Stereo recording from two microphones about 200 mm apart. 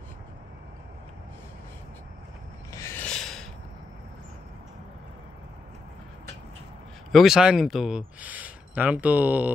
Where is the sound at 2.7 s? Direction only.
10° left (ahead or behind).